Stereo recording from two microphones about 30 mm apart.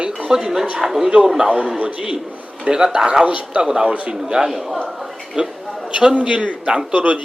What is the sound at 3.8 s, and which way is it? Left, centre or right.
Speech, right.